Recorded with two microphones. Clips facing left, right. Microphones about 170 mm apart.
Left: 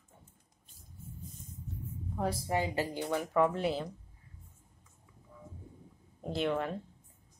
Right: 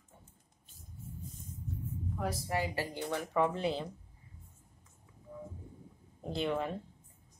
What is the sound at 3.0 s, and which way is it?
Speech, centre (ahead or behind).